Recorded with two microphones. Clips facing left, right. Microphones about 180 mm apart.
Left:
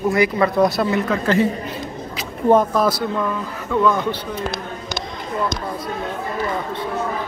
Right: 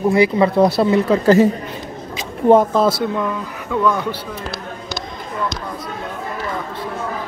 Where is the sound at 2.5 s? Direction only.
25° right (ahead or behind).